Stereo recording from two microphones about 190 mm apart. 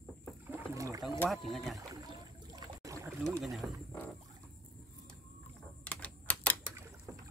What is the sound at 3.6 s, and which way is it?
Speech, centre (ahead or behind).